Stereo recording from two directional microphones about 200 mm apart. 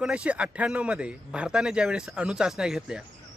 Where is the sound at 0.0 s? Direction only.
5° right (ahead or behind).